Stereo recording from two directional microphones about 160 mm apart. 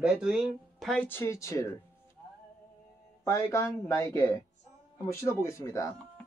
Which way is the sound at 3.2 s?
20° left (ahead or behind).